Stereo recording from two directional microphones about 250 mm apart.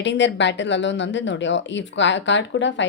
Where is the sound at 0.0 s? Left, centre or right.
Left.